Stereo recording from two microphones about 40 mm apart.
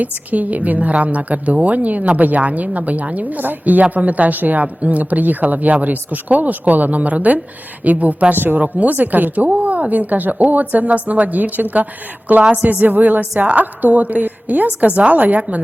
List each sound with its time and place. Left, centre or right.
0.0 s a woman's voice: right
8.5 s a woman's voice: right
12.4 s a woman's voice: right
12.7 s a woman's voice: right